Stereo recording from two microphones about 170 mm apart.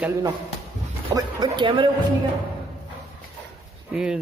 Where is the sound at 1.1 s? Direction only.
25° right (ahead or behind).